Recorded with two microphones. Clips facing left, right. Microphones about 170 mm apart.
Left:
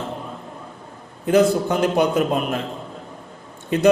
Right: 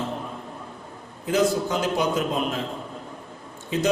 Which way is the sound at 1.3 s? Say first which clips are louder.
Left 5 dB; 60° left (ahead or behind).